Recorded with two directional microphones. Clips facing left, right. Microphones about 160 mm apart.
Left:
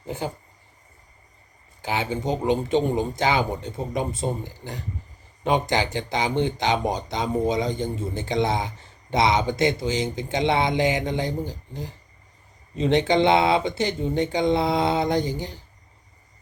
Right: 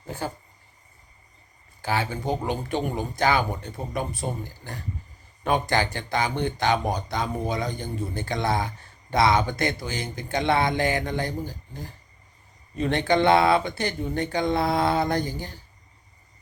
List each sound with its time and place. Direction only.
0.1 s speech: 20° left (ahead or behind)
1.8 s speech: 20° left (ahead or behind)